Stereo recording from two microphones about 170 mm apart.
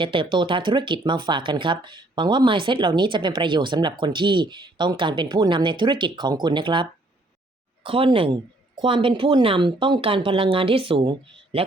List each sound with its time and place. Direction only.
0.0 s speech: 30° right (ahead or behind)
7.9 s speech: 30° right (ahead or behind)